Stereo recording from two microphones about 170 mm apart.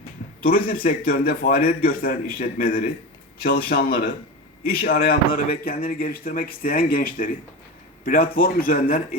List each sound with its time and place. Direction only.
0.4 s speech: 60° left (ahead or behind)